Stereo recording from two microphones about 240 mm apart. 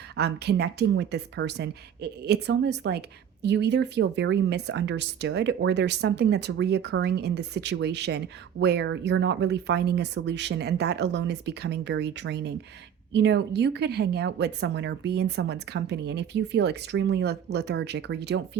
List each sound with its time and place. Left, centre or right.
0.2 s speech: right